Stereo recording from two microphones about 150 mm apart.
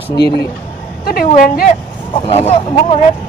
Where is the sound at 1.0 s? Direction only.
65° left (ahead or behind).